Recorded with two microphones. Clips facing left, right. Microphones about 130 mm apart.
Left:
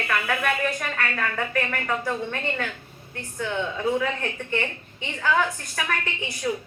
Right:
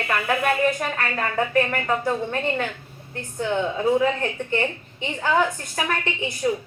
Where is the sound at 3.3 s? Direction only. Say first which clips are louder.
Right 4 dB; 30° right (ahead or behind).